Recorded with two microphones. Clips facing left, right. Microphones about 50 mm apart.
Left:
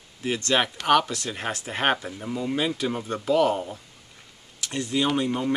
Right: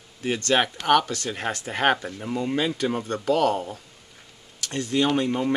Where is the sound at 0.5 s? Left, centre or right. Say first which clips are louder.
Right 1 dB; centre.